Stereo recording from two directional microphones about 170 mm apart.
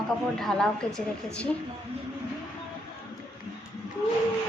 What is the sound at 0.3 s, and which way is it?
A woman's voice, centre (ahead or behind).